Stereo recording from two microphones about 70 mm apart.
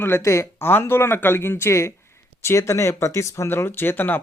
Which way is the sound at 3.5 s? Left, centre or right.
Left.